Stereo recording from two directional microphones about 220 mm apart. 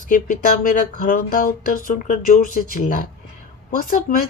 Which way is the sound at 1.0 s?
40° left (ahead or behind).